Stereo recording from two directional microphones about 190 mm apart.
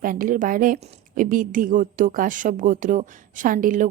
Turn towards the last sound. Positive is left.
turn(degrees=-45)  # may be behind; listen again after turning